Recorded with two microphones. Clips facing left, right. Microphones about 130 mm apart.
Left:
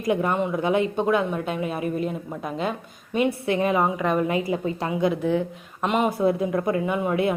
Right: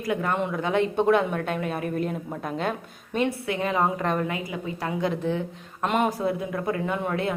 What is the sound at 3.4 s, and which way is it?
Speech, 20° left (ahead or behind).